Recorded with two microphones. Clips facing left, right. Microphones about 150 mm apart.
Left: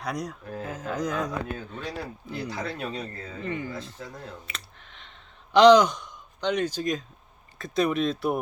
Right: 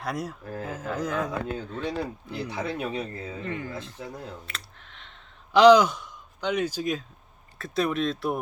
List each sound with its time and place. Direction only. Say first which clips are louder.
0.0 s speech: even; centre (ahead or behind)
2.5 s speech: right 4 dB; 20° right (ahead or behind)
3.3 s speech: left 3 dB; centre (ahead or behind)
3.9 s speech: right 2 dB; 10° right (ahead or behind)
4.4 s clicking: even; centre (ahead or behind)
5.5 s speech: even; 5° right (ahead or behind)